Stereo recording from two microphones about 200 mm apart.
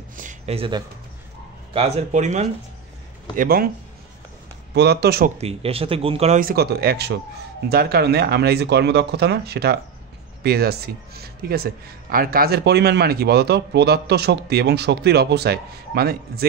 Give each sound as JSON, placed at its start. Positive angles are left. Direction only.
{"t": 0.1, "sound": "a sound", "side_deg": -40}
{"t": 1.7, "sound": "speech", "side_deg": -30}
{"t": 3.3, "sound": "speech", "side_deg": -50}
{"t": 4.7, "sound": "speech", "side_deg": -55}
{"t": 5.4, "sound": "speech", "side_deg": -30}
{"t": 6.4, "sound": "speech", "side_deg": -50}